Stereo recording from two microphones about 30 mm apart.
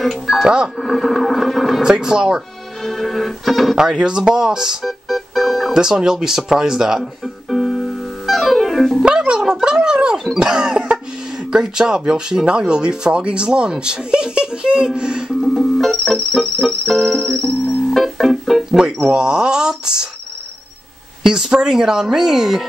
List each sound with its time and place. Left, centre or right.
0.0 s speech: centre
1.8 s speech: right
2.8 s music: centre
3.7 s speech: right
4.8 s music: centre
5.7 s speech: centre
7.0 s music: centre
9.6 s speech: right
15.4 s music: centre
18.9 s speech: right
21.2 s speech: right